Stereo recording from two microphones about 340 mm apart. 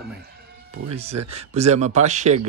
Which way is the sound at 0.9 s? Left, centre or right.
Centre.